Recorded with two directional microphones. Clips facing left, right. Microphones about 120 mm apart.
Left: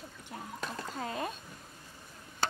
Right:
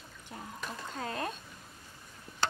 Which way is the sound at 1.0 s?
Centre (ahead or behind).